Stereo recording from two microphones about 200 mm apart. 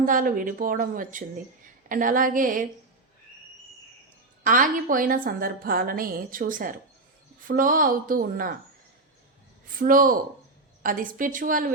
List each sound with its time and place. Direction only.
0.0 s a woman's voice: 45° right (ahead or behind)
4.4 s a woman's voice: 40° right (ahead or behind)
9.6 s a woman's voice: 45° right (ahead or behind)